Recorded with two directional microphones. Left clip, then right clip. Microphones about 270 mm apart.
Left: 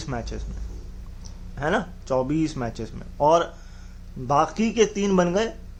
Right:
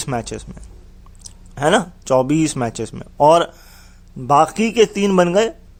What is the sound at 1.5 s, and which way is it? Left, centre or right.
A man's voice, right.